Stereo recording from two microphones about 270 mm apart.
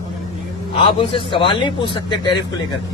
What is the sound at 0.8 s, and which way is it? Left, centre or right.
A man's voice, centre.